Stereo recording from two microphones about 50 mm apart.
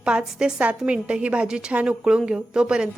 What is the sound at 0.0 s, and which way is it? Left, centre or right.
A woman's voice, centre.